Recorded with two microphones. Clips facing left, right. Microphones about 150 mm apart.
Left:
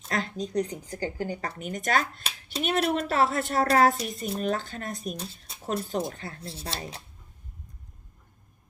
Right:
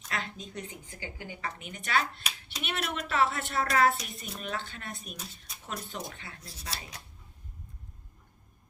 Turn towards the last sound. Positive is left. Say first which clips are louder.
# left 6 dB
turn(degrees=30)  # may be behind; listen again after turning